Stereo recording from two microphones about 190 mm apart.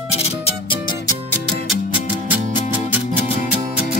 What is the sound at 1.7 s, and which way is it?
Music, 5° right (ahead or behind).